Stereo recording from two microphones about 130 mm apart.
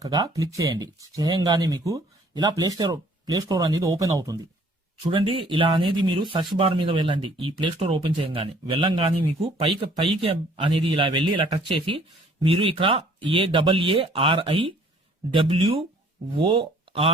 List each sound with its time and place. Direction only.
0.0 s speech: 25° right (ahead or behind)
5.1 s speech: 40° right (ahead or behind)